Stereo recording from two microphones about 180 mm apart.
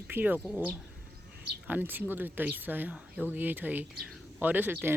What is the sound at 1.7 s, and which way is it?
Speech, 10° right (ahead or behind).